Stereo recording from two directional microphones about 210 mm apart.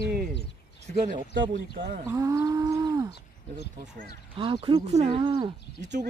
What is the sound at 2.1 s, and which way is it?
Speech, 15° right (ahead or behind).